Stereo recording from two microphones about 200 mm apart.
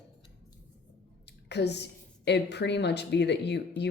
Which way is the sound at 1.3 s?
60° left (ahead or behind).